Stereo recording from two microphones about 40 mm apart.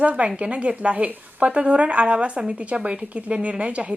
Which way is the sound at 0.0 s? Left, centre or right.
Right.